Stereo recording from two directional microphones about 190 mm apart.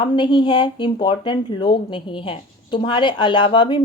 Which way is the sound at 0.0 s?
25° left (ahead or behind).